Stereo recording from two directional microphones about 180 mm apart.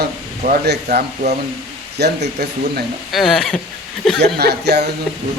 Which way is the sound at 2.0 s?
65° right (ahead or behind).